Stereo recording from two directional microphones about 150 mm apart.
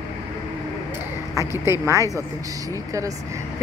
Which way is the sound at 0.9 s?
20° right (ahead or behind).